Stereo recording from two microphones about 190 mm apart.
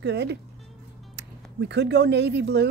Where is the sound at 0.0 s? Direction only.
65° right (ahead or behind).